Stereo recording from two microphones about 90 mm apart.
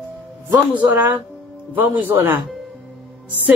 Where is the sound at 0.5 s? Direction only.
20° right (ahead or behind).